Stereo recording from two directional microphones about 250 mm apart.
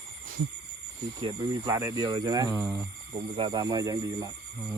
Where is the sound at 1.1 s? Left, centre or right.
Centre.